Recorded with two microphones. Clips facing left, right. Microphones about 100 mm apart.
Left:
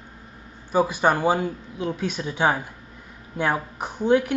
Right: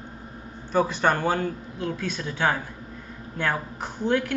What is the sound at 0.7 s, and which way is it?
Speech, 10° left (ahead or behind).